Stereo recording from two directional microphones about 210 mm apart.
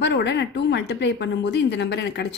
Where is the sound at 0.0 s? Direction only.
55° left (ahead or behind).